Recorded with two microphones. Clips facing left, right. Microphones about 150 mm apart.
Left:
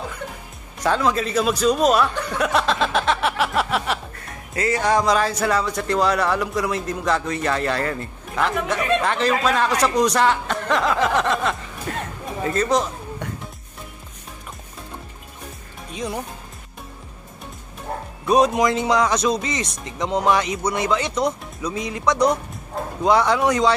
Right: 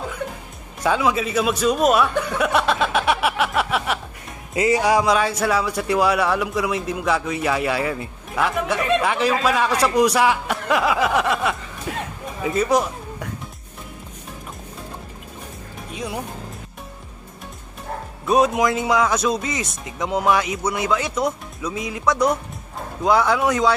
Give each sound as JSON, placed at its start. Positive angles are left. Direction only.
{"t": 0.8, "sound": "speech", "side_deg": -5}
{"t": 4.6, "sound": "a man's voice", "side_deg": -15}
{"t": 15.9, "sound": "speech", "side_deg": -5}
{"t": 18.2, "sound": "a man's voice", "side_deg": 0}